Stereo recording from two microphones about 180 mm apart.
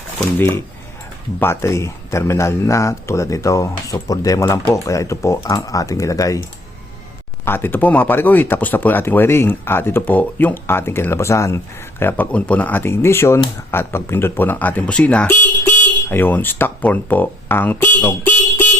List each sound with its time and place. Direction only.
0.3 s speech: 10° left (ahead or behind)
7.4 s speech: 10° left (ahead or behind)